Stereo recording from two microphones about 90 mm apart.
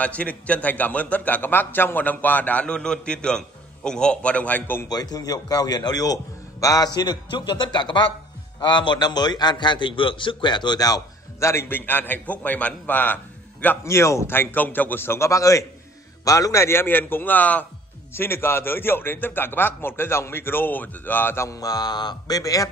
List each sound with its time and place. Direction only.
0.0 s a man's voice: 15° left (ahead or behind)
4.8 s a man's voice: 45° left (ahead or behind)
7.0 s a man's voice: 55° left (ahead or behind); by 13.7 s 20° left (ahead or behind)
13.8 s a man's voice: 35° left (ahead or behind)
21.5 s a man's voice: 40° left (ahead or behind)